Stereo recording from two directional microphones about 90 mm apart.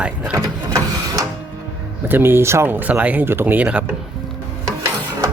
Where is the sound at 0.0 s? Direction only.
10° right (ahead or behind).